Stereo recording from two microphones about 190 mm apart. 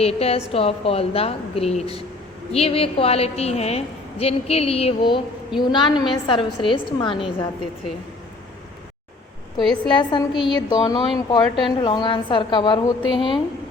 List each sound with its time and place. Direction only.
0.0 s a woman's voice: 30° left (ahead or behind)
9.6 s a woman's voice: centre (ahead or behind)
9.9 s a woman's voice: 25° left (ahead or behind)